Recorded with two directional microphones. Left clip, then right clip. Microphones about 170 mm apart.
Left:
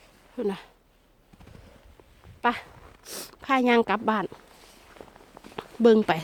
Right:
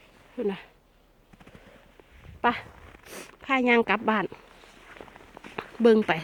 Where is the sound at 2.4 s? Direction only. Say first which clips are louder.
Even; 5° left (ahead or behind).